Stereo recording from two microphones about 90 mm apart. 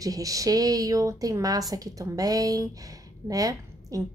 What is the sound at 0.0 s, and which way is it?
A woman's voice, 40° right (ahead or behind).